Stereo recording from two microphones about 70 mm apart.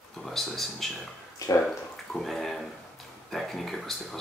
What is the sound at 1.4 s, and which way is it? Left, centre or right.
Speech, left.